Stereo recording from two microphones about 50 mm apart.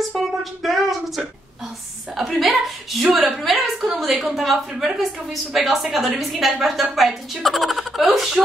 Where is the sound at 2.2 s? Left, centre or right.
Centre.